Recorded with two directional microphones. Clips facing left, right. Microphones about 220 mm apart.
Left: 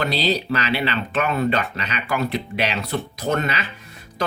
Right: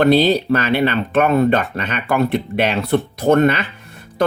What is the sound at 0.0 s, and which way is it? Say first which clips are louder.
Speech: right 9 dB; 50° right (ahead or behind).